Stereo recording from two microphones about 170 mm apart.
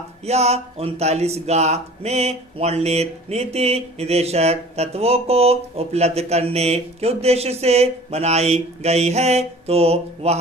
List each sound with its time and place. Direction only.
0.3 s speech: 40° right (ahead or behind)